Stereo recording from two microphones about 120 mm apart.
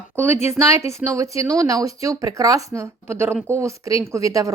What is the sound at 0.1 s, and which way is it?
Speech, 20° right (ahead or behind).